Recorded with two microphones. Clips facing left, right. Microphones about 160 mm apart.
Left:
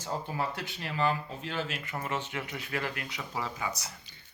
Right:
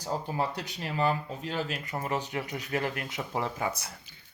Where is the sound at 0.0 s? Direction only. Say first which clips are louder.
Right 3 dB; 35° right (ahead or behind); by 3.8 s 55° right (ahead or behind).